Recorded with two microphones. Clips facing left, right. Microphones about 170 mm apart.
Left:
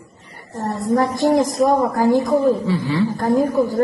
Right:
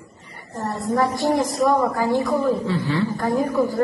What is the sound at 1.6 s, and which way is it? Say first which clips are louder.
Speech: left 1 dB; 45° left (ahead or behind).